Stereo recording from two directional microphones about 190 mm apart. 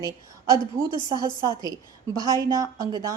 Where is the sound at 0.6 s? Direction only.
25° left (ahead or behind).